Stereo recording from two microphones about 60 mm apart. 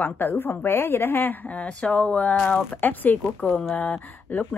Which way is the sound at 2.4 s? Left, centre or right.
Left.